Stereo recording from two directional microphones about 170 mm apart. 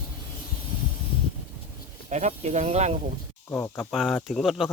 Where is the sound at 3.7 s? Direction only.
Centre (ahead or behind).